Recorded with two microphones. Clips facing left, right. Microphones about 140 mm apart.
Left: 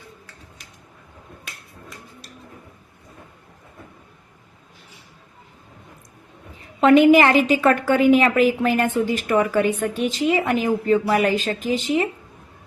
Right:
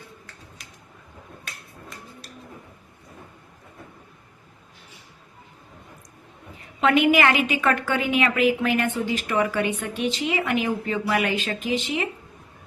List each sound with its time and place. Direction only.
6.7 s a woman's voice: 35° left (ahead or behind)